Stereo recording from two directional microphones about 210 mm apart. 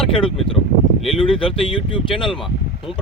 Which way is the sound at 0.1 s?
25° left (ahead or behind).